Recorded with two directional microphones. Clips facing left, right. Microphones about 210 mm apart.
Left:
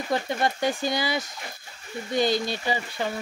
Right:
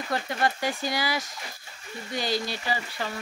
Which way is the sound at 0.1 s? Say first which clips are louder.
Left 2 dB; 20° left (ahead or behind).